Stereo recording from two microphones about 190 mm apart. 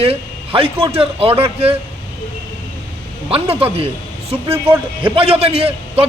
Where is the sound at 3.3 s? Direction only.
30° right (ahead or behind).